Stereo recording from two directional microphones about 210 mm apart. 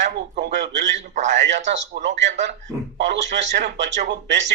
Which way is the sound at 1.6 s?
35° right (ahead or behind).